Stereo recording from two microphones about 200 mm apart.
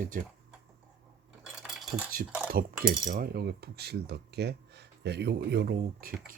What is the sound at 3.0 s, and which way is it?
Speech, 45° right (ahead or behind).